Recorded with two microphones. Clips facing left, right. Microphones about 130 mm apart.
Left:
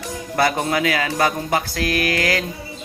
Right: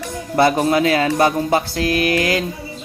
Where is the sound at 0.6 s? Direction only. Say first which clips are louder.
Right 5 dB; 30° right (ahead or behind).